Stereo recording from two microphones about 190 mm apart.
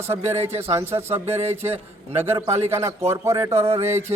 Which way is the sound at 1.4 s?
35° right (ahead or behind).